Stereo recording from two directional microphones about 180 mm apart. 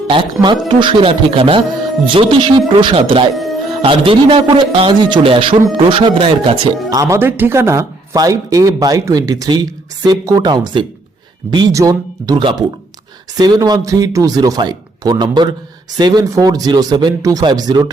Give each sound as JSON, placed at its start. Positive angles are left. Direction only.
{"t": 0.1, "sound": "speech", "side_deg": -25}
{"t": 3.3, "sound": "music", "side_deg": 0}
{"t": 3.8, "sound": "speech", "side_deg": -30}
{"t": 7.0, "sound": "speech", "side_deg": -15}